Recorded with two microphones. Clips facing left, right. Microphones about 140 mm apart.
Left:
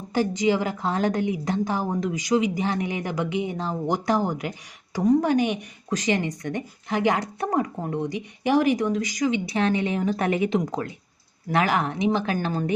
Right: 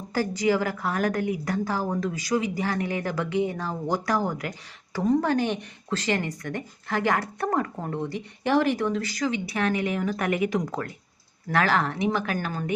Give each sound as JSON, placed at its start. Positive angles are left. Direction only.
{"t": 0.1, "sound": "a woman's voice", "side_deg": 20}